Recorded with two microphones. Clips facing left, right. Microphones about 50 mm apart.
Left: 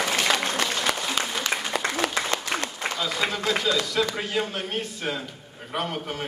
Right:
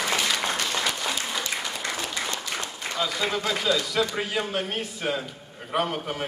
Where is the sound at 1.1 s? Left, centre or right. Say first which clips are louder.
Left 3 dB; left.